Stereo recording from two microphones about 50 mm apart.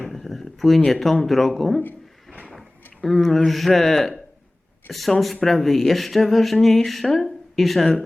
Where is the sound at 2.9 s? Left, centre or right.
Centre.